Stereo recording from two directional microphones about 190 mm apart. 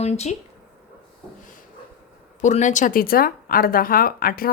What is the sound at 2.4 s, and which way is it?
Speech, 40° left (ahead or behind).